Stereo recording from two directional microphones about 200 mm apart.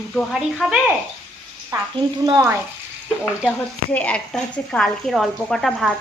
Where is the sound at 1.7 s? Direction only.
15° right (ahead or behind).